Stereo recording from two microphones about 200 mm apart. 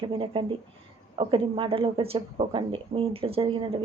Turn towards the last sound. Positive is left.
turn(degrees=-25)  # may be behind; listen again after turning